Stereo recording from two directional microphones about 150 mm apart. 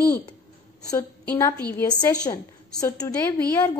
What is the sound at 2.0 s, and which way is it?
A woman's voice, 25° left (ahead or behind).